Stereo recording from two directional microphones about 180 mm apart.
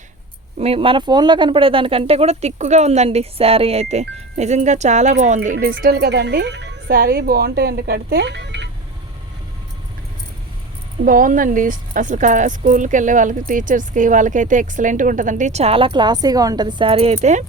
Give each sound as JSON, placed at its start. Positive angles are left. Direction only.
{"t": 0.6, "sound": "speech", "side_deg": -30}
{"t": 5.8, "sound": "speech", "side_deg": -65}
{"t": 11.0, "sound": "speech", "side_deg": -50}